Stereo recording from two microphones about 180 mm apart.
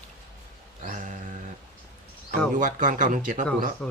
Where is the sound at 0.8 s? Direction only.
45° right (ahead or behind).